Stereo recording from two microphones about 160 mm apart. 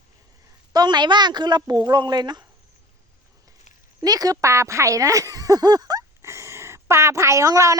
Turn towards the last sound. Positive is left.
turn(degrees=-20)  # may be behind; listen again after turning